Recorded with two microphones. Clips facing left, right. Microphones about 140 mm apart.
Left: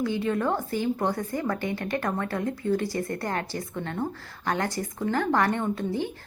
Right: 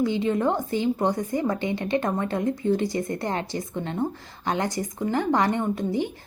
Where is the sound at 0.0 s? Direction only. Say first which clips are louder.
Right 3 dB; 20° right (ahead or behind).